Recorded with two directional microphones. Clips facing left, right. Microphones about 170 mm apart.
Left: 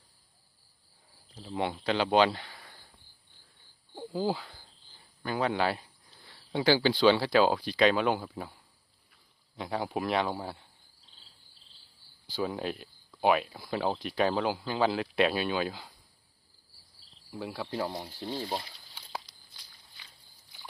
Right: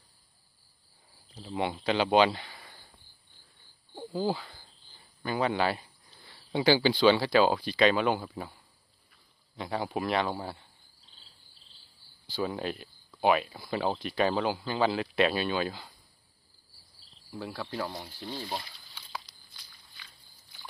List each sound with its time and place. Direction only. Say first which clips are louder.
1.4 s speech: right 1 dB; 10° right (ahead or behind)
3.9 s speech: even; 5° left (ahead or behind)
9.6 s speech: even; centre (ahead or behind)
12.3 s speech: even; 5° left (ahead or behind)
17.3 s speech: left 1 dB; 10° left (ahead or behind); by 19.2 s 30° left (ahead or behind)